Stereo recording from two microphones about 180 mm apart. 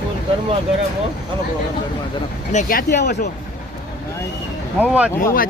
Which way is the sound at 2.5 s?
50° left (ahead or behind).